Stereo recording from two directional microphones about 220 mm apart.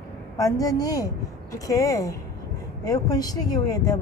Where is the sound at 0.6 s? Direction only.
15° left (ahead or behind).